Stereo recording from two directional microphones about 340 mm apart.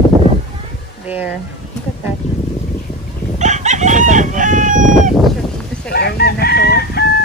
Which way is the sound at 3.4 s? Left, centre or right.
Right.